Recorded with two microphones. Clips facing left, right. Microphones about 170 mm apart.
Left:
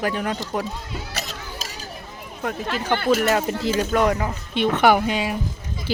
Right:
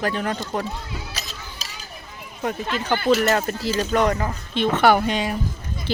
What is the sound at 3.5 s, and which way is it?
Speech, 20° left (ahead or behind).